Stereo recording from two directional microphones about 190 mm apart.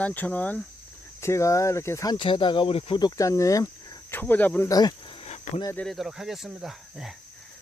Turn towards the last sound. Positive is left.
turn(degrees=0)  # may be behind; listen again after turning